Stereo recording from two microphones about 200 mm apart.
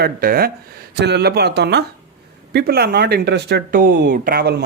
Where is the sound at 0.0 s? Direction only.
50° right (ahead or behind).